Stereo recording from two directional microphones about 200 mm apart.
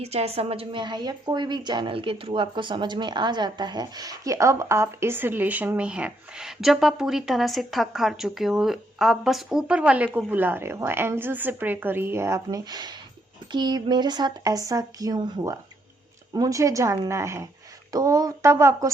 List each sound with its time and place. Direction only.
0.0 s a woman's voice: 30° right (ahead or behind); by 18.9 s 15° right (ahead or behind)